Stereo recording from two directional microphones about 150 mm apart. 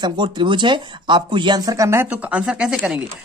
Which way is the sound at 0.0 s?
30° right (ahead or behind).